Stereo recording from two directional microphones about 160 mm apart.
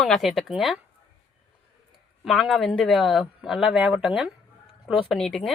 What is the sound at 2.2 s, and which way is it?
Speech, centre (ahead or behind).